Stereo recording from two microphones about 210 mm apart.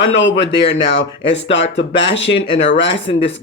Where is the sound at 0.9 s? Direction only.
60° left (ahead or behind).